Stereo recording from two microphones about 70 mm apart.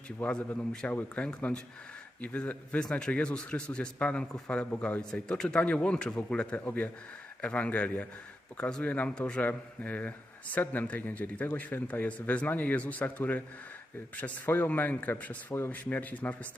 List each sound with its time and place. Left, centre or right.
0.3 s speech: centre